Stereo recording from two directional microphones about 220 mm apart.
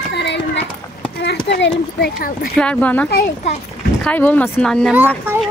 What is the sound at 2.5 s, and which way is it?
Speech, 5° left (ahead or behind).